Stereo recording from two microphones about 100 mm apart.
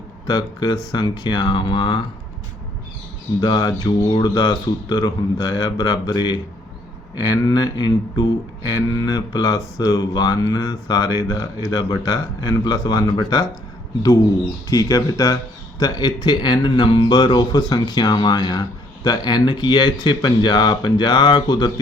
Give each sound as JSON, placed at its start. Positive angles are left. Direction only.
{"t": 0.3, "sound": "speech", "side_deg": 40}
{"t": 3.4, "sound": "speech", "side_deg": 45}
{"t": 14.7, "sound": "speech", "side_deg": 35}